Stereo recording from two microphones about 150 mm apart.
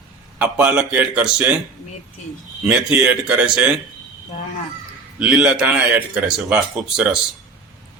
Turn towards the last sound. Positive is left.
turn(degrees=-5)  # may be behind; listen again after turning